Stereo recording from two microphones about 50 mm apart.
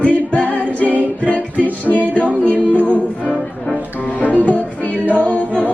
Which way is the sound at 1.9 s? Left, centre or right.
Centre.